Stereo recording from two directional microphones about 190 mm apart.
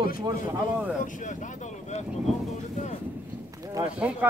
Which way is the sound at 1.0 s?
45° left (ahead or behind).